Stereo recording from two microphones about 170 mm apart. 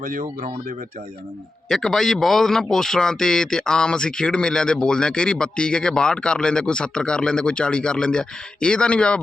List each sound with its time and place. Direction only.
0.0 s speech: 55° right (ahead or behind)
1.7 s a man's voice: centre (ahead or behind)